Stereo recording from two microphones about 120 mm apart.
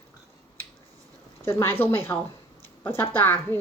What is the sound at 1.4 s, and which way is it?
A woman's voice, 20° left (ahead or behind).